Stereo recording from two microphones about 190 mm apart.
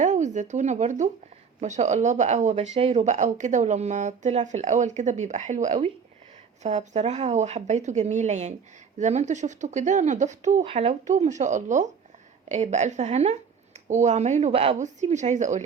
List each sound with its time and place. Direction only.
0.0 s speech: 40° right (ahead or behind)